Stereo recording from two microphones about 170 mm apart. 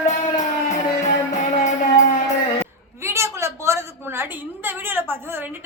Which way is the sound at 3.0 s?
15° right (ahead or behind).